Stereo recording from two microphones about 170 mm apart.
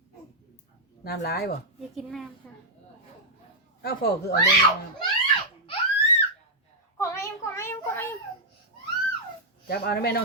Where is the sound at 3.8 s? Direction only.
65° left (ahead or behind).